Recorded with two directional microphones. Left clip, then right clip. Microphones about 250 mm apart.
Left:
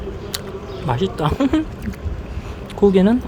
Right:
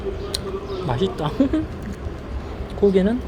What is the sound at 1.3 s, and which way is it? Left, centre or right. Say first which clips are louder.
Speech: left 2 dB; left.